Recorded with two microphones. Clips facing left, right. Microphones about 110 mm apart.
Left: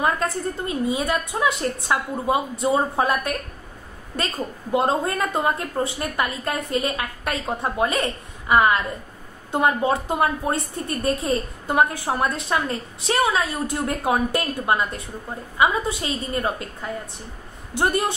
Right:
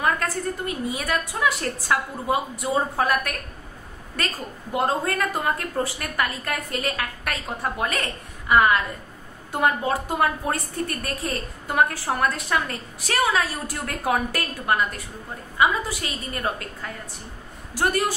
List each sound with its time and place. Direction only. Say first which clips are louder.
0.0 s a woman's voice: left 2 dB; 20° left (ahead or behind)
4.7 s a woman's voice: left 2 dB; 20° left (ahead or behind)